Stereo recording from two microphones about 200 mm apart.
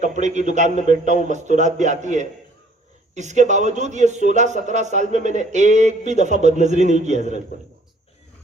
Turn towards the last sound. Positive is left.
turn(degrees=-35)  # may be behind; listen again after turning